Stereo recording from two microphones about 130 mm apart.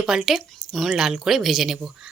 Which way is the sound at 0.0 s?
5° right (ahead or behind).